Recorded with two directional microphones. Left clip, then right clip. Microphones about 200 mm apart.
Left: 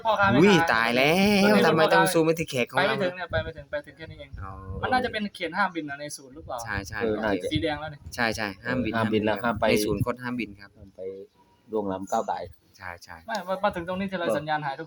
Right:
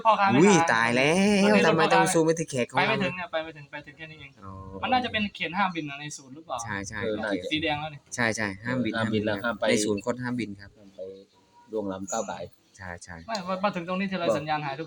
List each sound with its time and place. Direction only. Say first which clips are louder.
0.0 s speech: even; 5° right (ahead or behind)
9.1 s speech: left 3 dB; 45° left (ahead or behind)
9.7 s speech: left 1 dB; centre (ahead or behind)
11.7 s speech: left 4 dB; 40° left (ahead or behind)
12.8 s speech: left 1 dB; centre (ahead or behind)